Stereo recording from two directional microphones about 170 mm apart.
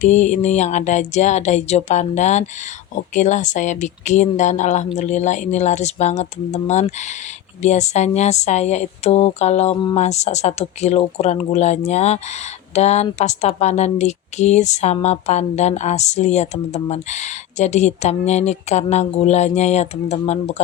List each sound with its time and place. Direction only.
0.0 s music: 45° left (ahead or behind)
7.6 s speech: 40° left (ahead or behind)